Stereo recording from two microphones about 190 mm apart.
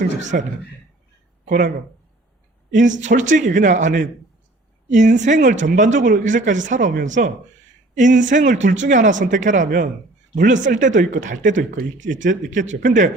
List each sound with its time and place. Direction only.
0.3 s speech: 50° right (ahead or behind)
2.7 s speech: 40° right (ahead or behind)